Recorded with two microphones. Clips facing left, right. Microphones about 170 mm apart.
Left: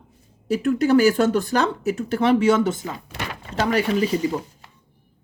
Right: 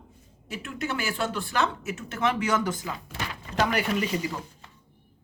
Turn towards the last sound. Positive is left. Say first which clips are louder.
# left 7 dB
turn(degrees=30)  # may be behind; listen again after turning